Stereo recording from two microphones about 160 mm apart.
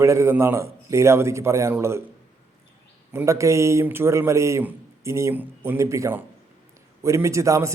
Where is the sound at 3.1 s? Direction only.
20° right (ahead or behind).